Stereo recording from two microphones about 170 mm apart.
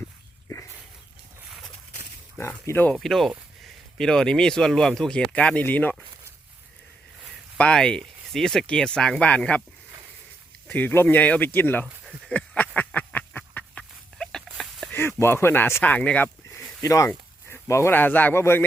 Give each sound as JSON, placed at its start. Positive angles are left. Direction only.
{"t": 2.4, "sound": "speech", "side_deg": 15}
{"t": 7.6, "sound": "speech", "side_deg": 5}
{"t": 10.7, "sound": "speech", "side_deg": 10}
{"t": 12.3, "sound": "a sound", "side_deg": 10}